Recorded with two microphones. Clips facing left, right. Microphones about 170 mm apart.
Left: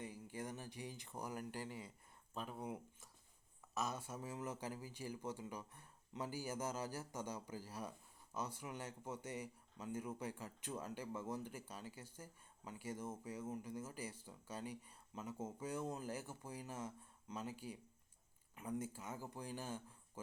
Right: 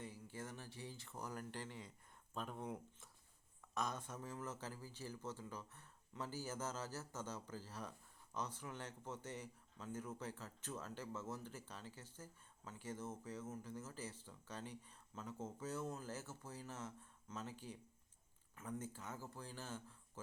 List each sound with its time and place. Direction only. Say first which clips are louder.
0.0 s a man's voice: left 3 dB; 15° left (ahead or behind)